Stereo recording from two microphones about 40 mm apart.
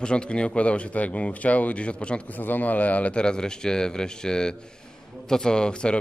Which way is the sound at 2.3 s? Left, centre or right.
Left.